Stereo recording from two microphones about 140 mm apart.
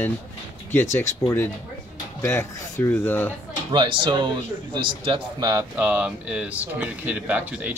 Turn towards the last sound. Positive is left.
turn(degrees=-10)  # may be behind; listen again after turning